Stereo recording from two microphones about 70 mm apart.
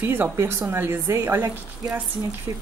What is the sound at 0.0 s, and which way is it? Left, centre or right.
Speech, right.